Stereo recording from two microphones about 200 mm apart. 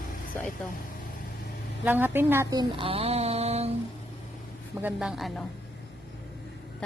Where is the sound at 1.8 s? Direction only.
10° right (ahead or behind); by 3.7 s 30° right (ahead or behind).